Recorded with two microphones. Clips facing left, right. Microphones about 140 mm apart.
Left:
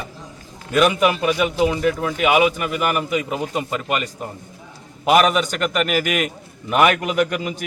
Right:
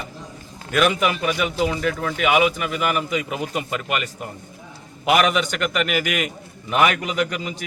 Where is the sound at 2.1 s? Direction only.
40° left (ahead or behind).